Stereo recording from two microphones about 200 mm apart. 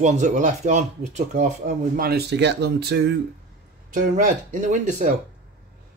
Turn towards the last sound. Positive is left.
turn(degrees=-40)  # may be behind; listen again after turning